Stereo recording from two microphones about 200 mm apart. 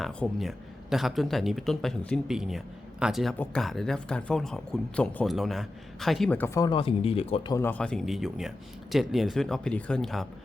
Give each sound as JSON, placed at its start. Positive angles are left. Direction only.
{"t": 0.0, "sound": "speech", "side_deg": 5}
{"t": 7.5, "sound": "speech", "side_deg": 10}